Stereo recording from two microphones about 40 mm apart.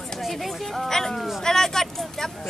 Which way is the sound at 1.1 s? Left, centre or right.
Centre.